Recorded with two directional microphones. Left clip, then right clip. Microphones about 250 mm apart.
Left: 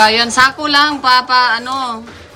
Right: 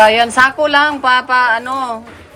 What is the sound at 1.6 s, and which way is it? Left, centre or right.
Speech, centre.